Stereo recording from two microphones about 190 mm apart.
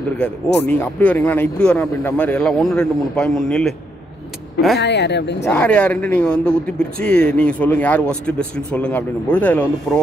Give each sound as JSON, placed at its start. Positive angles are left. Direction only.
{"t": 0.7, "sound": "a man's voice", "side_deg": 10}
{"t": 4.7, "sound": "speech", "side_deg": 65}
{"t": 5.4, "sound": "a man's voice", "side_deg": 5}